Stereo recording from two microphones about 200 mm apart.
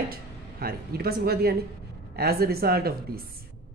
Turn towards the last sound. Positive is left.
turn(degrees=-50)  # may be behind; listen again after turning